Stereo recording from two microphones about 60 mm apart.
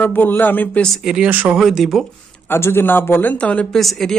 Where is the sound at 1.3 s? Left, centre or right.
Right.